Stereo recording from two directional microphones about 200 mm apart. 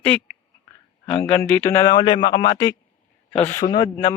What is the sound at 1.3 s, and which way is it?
Speech, 10° left (ahead or behind).